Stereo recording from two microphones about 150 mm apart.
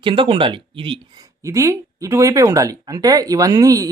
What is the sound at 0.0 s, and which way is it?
Speech, 35° right (ahead or behind).